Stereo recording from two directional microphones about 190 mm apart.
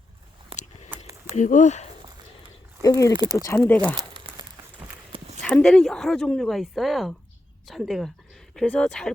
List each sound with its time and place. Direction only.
0.5 s biting: 30° right (ahead or behind)
1.4 s speech: 40° left (ahead or behind)
2.8 s speech: 20° left (ahead or behind)
5.1 s horse: 35° right (ahead or behind)
5.4 s speech: 10° left (ahead or behind)